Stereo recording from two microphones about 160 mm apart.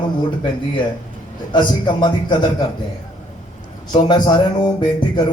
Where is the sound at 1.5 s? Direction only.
30° left (ahead or behind).